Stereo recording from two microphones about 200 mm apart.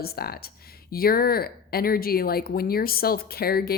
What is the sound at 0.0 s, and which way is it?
Speech, 50° left (ahead or behind).